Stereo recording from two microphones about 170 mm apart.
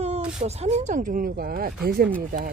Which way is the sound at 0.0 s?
40° right (ahead or behind).